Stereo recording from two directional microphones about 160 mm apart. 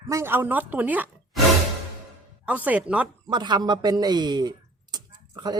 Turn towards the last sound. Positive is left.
turn(degrees=-25)  # may be behind; listen again after turning